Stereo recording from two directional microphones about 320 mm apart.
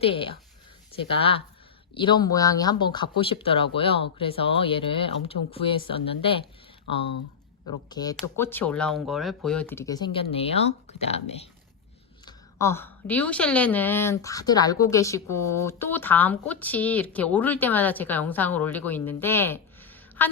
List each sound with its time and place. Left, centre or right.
0.0 s speech: centre
7.9 s speech: centre
12.2 s a woman's voice: centre